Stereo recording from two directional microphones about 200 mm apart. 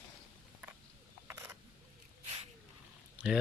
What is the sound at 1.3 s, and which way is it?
Camera, 10° right (ahead or behind).